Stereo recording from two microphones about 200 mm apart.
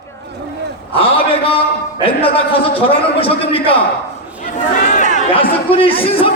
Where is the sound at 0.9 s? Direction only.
30° left (ahead or behind).